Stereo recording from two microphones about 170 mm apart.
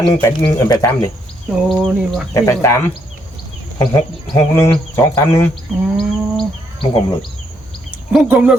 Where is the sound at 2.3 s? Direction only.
15° left (ahead or behind).